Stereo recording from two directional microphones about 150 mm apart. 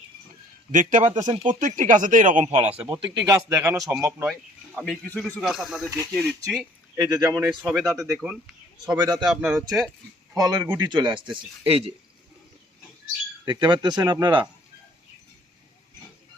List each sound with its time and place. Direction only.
0.7 s speech: 60° right (ahead or behind)
1.5 s speech: 60° right (ahead or behind)
2.5 s a man's voice: 40° right (ahead or behind)
2.9 s speech: 25° right (ahead or behind)
3.8 s speech: centre (ahead or behind)
6.9 s speech: 20° right (ahead or behind)
7.4 s speech: 5° right (ahead or behind)
9.0 s speech: 30° right (ahead or behind)
9.2 s speech: 5° right (ahead or behind)
10.3 s speech: 25° right (ahead or behind)
11.6 s speech: 40° right (ahead or behind)
13.4 s speech: 30° right (ahead or behind)